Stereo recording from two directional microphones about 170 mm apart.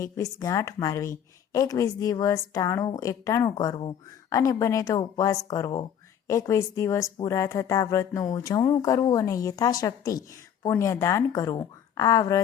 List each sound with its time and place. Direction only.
0.0 s speech: 20° left (ahead or behind)